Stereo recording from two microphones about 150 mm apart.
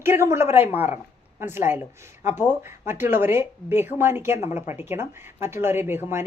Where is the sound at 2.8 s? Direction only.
15° right (ahead or behind).